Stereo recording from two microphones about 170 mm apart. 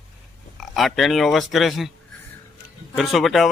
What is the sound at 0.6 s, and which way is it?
Speech, centre (ahead or behind).